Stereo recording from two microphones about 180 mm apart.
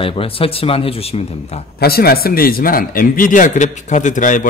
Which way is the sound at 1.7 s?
60° left (ahead or behind).